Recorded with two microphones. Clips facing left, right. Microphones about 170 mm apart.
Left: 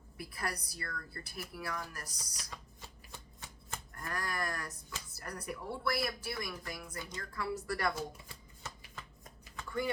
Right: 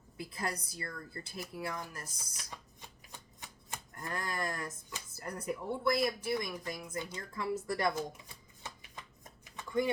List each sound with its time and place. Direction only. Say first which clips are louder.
0.2 s speech: right 2 dB; 20° right (ahead or behind)
3.7 s speech: right 1 dB; 20° right (ahead or behind)
8.6 s shuffling cards: even; 20° right (ahead or behind)